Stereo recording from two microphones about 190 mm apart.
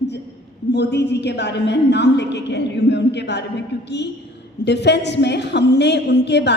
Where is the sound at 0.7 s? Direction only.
60° left (ahead or behind).